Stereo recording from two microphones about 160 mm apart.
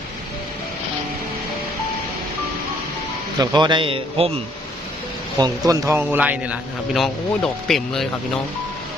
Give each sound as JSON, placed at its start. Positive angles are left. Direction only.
{"t": 3.3, "sound": "a man's voice", "side_deg": -25}
{"t": 5.4, "sound": "a man's voice", "side_deg": -20}